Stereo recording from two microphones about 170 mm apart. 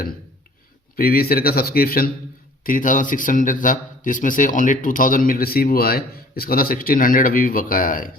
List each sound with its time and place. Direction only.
0.9 s a man's voice: 60° left (ahead or behind)